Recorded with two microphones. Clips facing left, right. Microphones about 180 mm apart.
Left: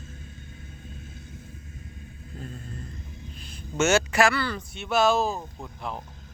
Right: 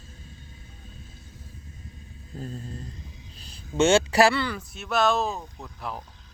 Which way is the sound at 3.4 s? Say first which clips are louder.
Right 3 dB; 35° right (ahead or behind).